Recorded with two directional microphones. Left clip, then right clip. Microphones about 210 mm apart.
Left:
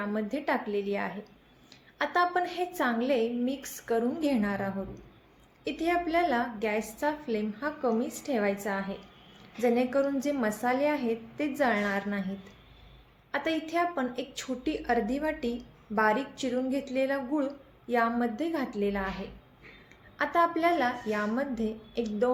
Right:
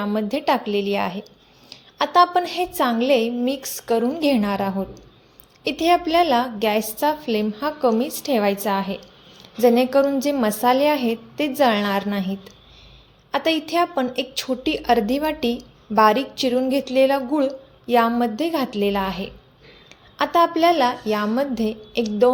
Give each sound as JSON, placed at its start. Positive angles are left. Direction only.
{"t": 0.0, "sound": "a woman's voice", "side_deg": -35}
{"t": 20.1, "sound": "a woman's voice", "side_deg": -35}